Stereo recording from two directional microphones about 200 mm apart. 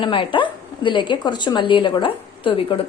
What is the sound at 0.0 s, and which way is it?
A woman's voice, 25° left (ahead or behind).